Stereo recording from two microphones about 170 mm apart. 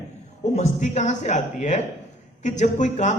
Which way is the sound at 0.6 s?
45° left (ahead or behind).